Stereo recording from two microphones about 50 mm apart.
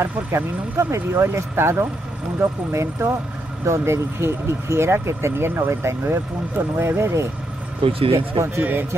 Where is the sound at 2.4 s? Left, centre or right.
Right.